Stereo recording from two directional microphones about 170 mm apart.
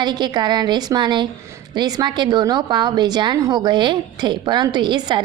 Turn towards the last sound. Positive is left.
turn(degrees=-30)  # may be behind; listen again after turning